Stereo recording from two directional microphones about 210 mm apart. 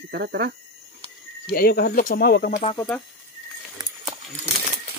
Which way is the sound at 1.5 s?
45° left (ahead or behind).